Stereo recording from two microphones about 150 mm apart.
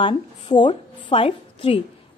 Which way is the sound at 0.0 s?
35° left (ahead or behind).